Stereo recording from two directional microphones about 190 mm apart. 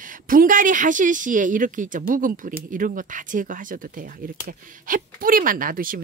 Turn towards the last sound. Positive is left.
turn(degrees=-50)  # may be behind; listen again after turning